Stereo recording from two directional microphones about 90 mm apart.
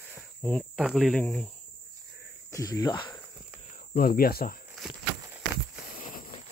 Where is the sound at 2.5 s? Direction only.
40° left (ahead or behind).